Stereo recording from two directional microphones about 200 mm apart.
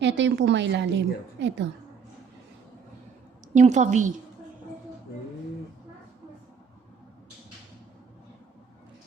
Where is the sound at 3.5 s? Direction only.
35° right (ahead or behind).